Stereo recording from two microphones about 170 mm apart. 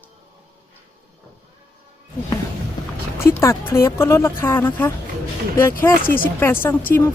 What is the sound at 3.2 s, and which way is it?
Speech, 15° left (ahead or behind).